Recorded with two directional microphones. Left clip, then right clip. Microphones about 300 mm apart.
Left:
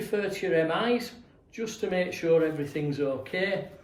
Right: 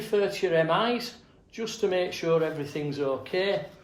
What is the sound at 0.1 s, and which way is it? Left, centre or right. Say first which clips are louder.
Speech: right 3 dB; centre.